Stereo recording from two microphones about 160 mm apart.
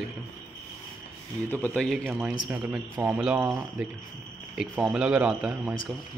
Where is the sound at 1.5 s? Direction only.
10° left (ahead or behind).